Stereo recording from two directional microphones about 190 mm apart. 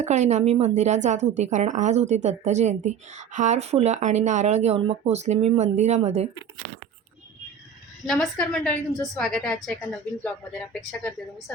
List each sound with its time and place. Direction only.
0.0 s speech: 35° right (ahead or behind)
8.0 s a woman's voice: centre (ahead or behind)